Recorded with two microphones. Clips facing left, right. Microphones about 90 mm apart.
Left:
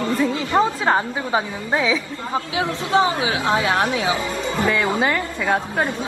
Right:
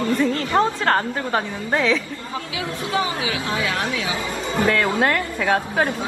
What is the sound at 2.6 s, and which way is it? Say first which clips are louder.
A woman's voice: left 5 dB; 25° left (ahead or behind).